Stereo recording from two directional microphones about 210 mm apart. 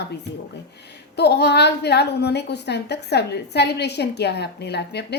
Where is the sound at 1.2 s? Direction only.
50° left (ahead or behind).